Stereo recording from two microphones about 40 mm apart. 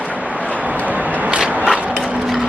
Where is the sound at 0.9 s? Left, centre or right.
Right.